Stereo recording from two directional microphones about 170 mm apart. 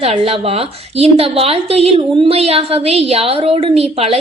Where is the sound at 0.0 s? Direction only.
35° right (ahead or behind).